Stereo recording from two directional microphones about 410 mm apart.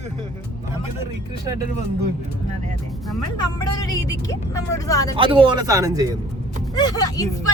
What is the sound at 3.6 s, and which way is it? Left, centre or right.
Speech, centre.